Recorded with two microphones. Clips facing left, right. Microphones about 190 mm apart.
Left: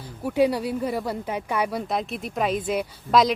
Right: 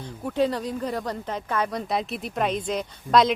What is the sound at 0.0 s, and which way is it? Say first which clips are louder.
Speech: left 3 dB; 10° left (ahead or behind).